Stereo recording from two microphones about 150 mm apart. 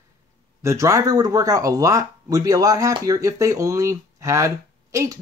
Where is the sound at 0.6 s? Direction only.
20° right (ahead or behind).